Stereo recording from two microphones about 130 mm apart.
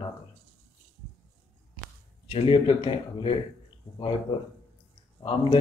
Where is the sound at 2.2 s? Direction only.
40° left (ahead or behind).